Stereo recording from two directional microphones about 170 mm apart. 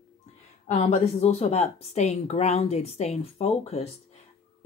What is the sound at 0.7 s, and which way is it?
A woman's voice, 40° left (ahead or behind).